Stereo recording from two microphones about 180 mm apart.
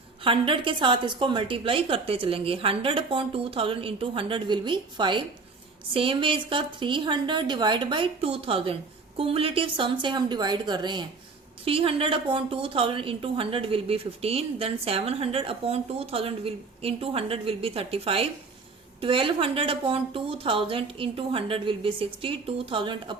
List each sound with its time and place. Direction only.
0.3 s a woman's voice: 30° right (ahead or behind)